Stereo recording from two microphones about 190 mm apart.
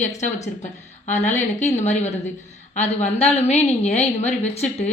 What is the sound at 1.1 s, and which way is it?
A woman's voice, 40° left (ahead or behind).